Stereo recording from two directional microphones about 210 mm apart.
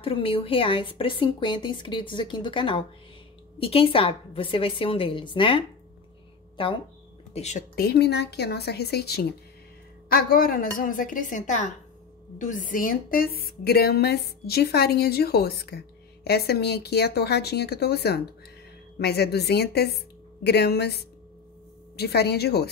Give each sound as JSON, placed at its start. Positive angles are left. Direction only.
{"t": 0.0, "sound": "a woman's voice", "side_deg": 25}
{"t": 6.6, "sound": "a woman's voice", "side_deg": 25}
{"t": 7.7, "sound": "a woman's voice", "side_deg": 50}